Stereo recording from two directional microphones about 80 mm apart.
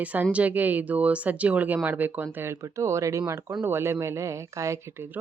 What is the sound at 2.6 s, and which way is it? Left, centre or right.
Speech, right.